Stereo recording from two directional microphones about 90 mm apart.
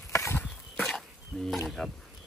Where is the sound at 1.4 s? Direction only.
Centre (ahead or behind).